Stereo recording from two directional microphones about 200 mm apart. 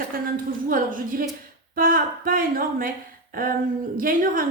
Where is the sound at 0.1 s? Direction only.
45° right (ahead or behind).